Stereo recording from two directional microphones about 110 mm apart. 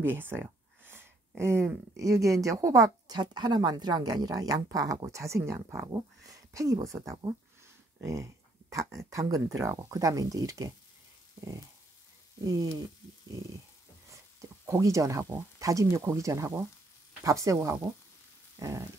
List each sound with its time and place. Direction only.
0.0 s a sound: 20° right (ahead or behind)
2.0 s a woman's voice: 30° right (ahead or behind)
14.4 s speech: 30° right (ahead or behind)